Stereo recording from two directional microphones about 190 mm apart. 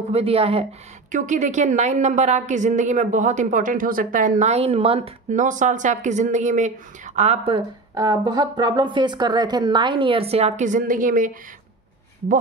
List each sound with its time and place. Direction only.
0.1 s a woman's voice: 30° right (ahead or behind)
7.9 s a woman's voice: 20° right (ahead or behind); by 11.3 s 45° right (ahead or behind)